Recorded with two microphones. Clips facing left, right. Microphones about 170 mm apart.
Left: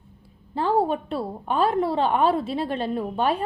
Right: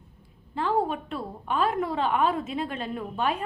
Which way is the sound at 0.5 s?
35° left (ahead or behind).